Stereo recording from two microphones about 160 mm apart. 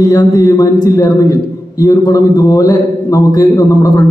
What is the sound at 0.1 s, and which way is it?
A man's voice, 20° left (ahead or behind).